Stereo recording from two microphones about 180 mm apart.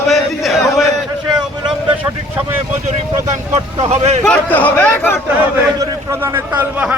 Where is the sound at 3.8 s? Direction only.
35° right (ahead or behind).